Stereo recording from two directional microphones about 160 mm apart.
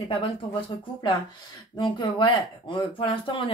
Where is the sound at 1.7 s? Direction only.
30° left (ahead or behind).